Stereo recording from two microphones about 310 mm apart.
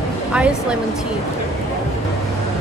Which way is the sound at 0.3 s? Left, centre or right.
Centre.